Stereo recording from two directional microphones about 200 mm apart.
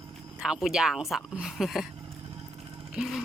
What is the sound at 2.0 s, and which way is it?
Vehicle, 25° right (ahead or behind).